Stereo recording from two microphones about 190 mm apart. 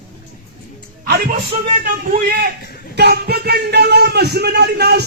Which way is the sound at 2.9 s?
60° right (ahead or behind).